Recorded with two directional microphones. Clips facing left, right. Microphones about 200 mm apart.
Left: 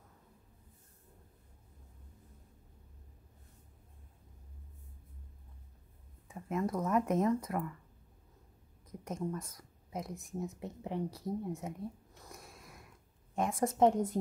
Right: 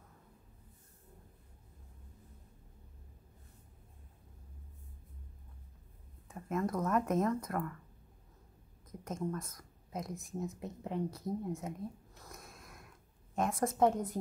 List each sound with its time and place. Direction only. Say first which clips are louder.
6.2 s speech: even; 10° left (ahead or behind)
9.0 s speech: even; 15° left (ahead or behind)
12.3 s snort: even; 10° left (ahead or behind)
13.6 s a woman's voice: left 3 dB; 20° left (ahead or behind)